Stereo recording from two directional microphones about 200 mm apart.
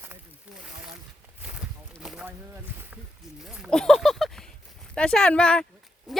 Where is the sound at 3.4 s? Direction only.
Centre (ahead or behind).